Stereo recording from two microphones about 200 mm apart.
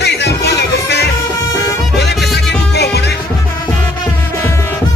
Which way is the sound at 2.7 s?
55° left (ahead or behind).